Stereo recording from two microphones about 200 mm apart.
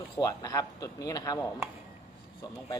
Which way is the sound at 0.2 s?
15° left (ahead or behind).